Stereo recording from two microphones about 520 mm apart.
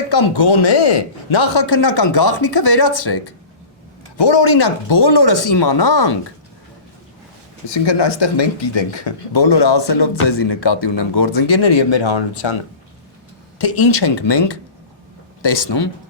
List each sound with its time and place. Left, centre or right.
0.1 s speech: left
4.2 s speech: left
7.7 s speech: left
13.8 s speech: left